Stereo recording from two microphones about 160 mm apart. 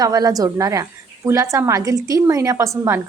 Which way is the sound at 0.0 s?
25° right (ahead or behind).